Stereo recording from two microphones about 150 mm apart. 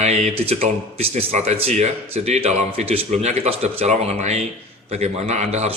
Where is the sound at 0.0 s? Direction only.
45° right (ahead or behind).